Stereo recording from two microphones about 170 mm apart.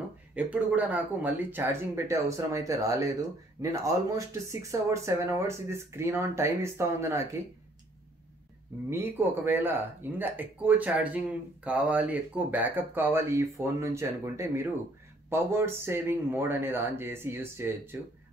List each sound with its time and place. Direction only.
0.3 s speech: 10° right (ahead or behind)
8.9 s speech: 15° right (ahead or behind)